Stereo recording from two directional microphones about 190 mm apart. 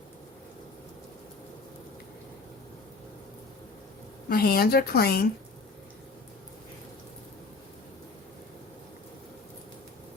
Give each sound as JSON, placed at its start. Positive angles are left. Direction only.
{"t": 4.3, "sound": "speech", "side_deg": 55}